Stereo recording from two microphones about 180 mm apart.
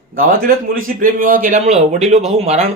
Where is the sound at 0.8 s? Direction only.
50° right (ahead or behind).